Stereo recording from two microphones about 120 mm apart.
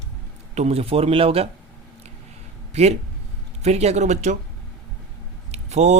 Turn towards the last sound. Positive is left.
turn(degrees=-70)  # may be behind; listen again after turning